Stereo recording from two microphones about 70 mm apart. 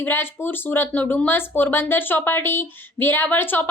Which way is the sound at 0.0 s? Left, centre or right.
Left.